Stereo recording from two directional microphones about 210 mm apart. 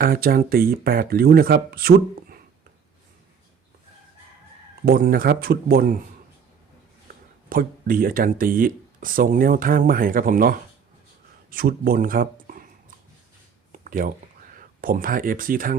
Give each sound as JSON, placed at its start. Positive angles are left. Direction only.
{"t": 0.0, "sound": "speech", "side_deg": -45}
{"t": 4.9, "sound": "speech", "side_deg": -45}
{"t": 7.5, "sound": "speech", "side_deg": -45}
{"t": 13.7, "sound": "a sound", "side_deg": -40}
{"t": 14.5, "sound": "speech", "side_deg": -40}